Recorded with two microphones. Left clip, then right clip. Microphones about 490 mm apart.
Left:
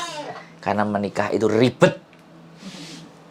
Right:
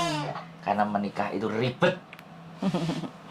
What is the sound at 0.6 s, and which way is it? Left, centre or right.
Speech, left.